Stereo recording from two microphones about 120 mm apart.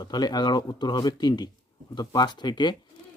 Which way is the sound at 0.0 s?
35° left (ahead or behind).